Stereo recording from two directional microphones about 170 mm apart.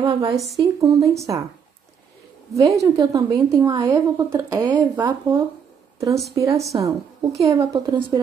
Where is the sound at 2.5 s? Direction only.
20° right (ahead or behind).